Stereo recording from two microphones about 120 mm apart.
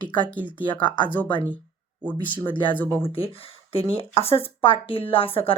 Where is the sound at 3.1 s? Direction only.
55° left (ahead or behind).